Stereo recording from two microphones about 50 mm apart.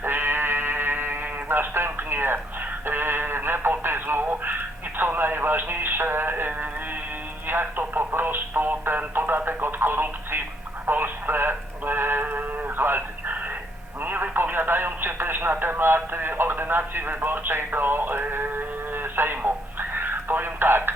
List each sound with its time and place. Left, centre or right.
0.0 s sheep: right
2.8 s speech: right
10.8 s radio: right
14.0 s speech: right
20.0 s radio: right